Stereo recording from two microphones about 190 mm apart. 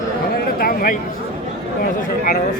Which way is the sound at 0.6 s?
50° left (ahead or behind).